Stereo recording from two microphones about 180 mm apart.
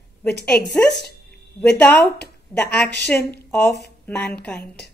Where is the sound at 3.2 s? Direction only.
65° left (ahead or behind).